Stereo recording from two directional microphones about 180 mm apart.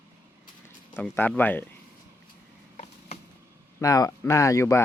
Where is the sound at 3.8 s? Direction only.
20° left (ahead or behind).